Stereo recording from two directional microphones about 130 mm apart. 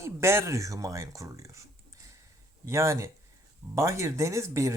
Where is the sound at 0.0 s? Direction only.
20° right (ahead or behind).